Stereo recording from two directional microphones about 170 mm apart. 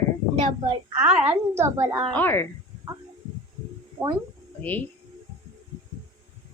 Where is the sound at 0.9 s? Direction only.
10° right (ahead or behind).